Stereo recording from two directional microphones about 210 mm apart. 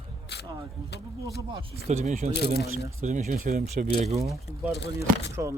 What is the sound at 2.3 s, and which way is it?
Speech, 50° left (ahead or behind).